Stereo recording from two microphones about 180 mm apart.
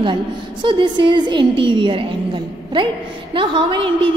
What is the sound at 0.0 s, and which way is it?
A woman's voice, 25° right (ahead or behind).